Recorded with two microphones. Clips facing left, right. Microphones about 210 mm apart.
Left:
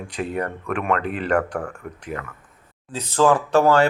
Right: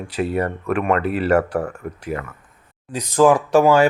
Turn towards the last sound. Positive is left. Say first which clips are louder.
# right 3 dB
turn(degrees=-10)  # may be behind; listen again after turning